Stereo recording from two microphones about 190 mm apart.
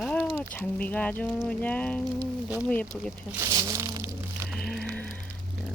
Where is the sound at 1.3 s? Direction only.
5° left (ahead or behind).